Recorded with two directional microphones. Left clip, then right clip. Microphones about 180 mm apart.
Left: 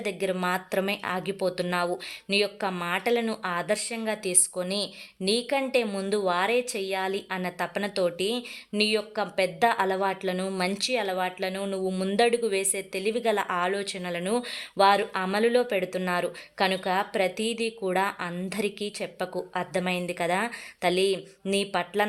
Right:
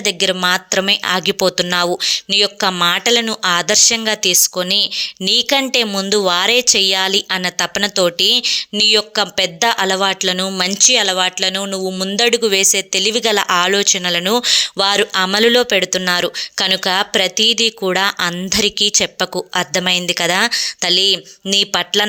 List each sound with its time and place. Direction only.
0.0 s speech: 20° right (ahead or behind)
17.3 s speech: 10° right (ahead or behind)